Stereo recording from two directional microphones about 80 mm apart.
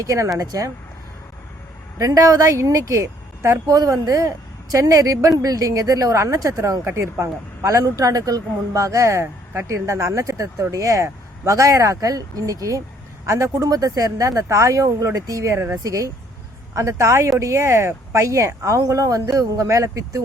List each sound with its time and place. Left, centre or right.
0.0 s speech: right
2.0 s speech: right
3.8 s speech: right
6.8 s speech: right
15.8 s speech: right